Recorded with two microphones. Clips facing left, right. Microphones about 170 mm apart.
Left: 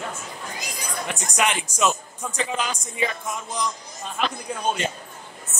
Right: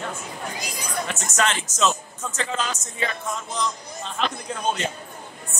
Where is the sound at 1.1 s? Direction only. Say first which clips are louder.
Left 1 dB; 15° left (ahead or behind).